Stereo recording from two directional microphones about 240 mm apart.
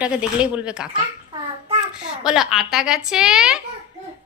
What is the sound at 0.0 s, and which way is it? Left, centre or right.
Speech, centre.